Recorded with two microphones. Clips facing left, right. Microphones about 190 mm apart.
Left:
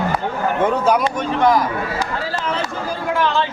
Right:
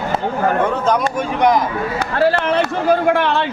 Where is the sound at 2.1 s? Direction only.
65° right (ahead or behind).